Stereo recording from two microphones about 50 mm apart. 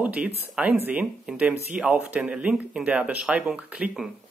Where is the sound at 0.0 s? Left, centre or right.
Right.